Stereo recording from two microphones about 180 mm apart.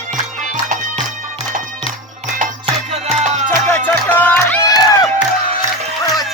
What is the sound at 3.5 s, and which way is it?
Music, 10° left (ahead or behind).